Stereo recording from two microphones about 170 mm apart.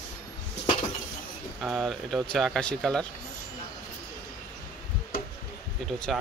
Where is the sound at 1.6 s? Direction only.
Centre (ahead or behind).